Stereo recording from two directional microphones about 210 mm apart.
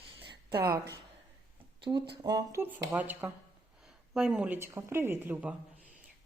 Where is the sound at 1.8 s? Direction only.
25° right (ahead or behind).